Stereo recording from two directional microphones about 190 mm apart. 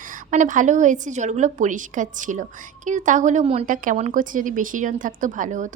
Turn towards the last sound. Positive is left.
turn(degrees=-40)  # may be behind; listen again after turning